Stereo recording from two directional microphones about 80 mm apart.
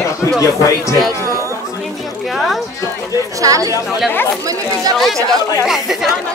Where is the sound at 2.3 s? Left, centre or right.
Centre.